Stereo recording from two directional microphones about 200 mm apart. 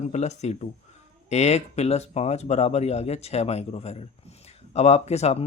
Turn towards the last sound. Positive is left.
turn(degrees=30)  # may be behind; listen again after turning